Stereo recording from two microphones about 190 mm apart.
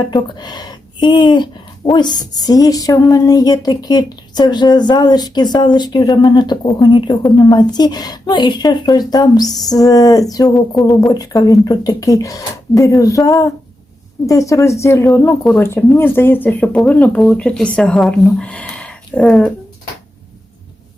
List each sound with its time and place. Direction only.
0.1 s speech: 20° left (ahead or behind)
10.8 s speech: centre (ahead or behind)
11.1 s speech: 20° left (ahead or behind); by 19.5 s 5° left (ahead or behind)